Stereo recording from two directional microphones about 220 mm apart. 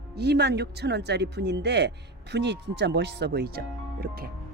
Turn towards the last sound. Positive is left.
turn(degrees=-45)  # may be behind; listen again after turning